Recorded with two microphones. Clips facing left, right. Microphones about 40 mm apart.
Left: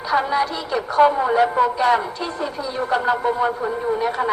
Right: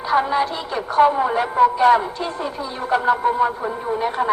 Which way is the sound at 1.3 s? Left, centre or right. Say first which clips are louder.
Even; centre.